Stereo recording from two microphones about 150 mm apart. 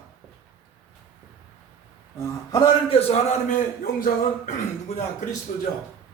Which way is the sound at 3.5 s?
65° left (ahead or behind).